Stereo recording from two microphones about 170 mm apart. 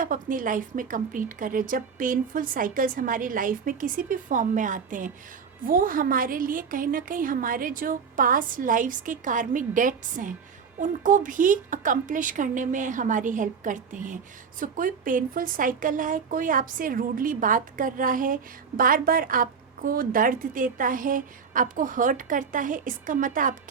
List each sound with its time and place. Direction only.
0.0 s a woman's voice: 55° right (ahead or behind)